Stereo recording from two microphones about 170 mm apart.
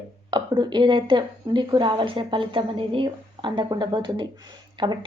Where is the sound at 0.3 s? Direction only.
25° right (ahead or behind).